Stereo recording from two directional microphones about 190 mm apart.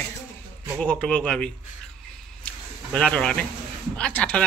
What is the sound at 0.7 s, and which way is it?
Speech, 5° left (ahead or behind).